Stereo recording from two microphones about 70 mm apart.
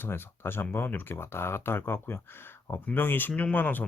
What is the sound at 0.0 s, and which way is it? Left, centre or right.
Speech, left.